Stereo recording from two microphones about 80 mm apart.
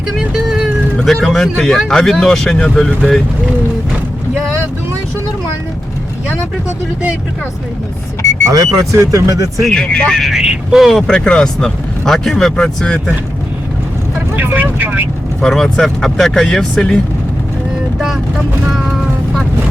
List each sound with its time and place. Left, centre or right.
0.2 s vehicle: centre
0.9 s speech: centre
8.4 s speech: right
9.6 s speech: centre
10.2 s speech: centre
11.1 s speech: centre
14.3 s speech: right
15.4 s speech: centre
18.7 s speech: centre